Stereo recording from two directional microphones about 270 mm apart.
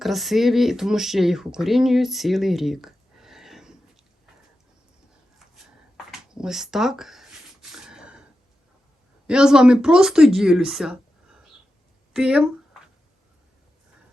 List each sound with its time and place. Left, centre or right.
0.0 s speech: centre
6.1 s a sound: centre
9.2 s speech: centre